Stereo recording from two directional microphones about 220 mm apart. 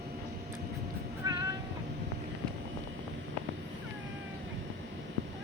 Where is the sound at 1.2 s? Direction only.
15° right (ahead or behind).